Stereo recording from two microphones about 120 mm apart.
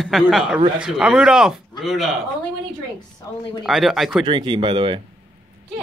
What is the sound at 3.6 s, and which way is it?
Speech, centre (ahead or behind).